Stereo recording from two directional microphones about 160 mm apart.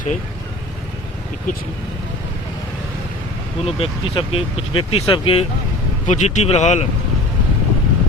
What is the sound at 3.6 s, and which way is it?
Speech, 35° left (ahead or behind).